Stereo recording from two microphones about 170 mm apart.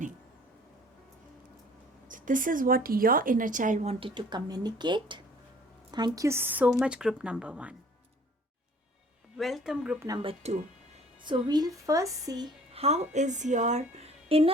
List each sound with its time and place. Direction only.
2.0 s a woman's voice: 50° right (ahead or behind)
4.0 s speech: 25° right (ahead or behind); by 7.8 s 5° right (ahead or behind)
9.4 s speech: centre (ahead or behind)
10.2 s a woman's voice: 40° right (ahead or behind)
11.2 s a woman's voice: 25° right (ahead or behind)
12.8 s a woman's voice: 40° right (ahead or behind)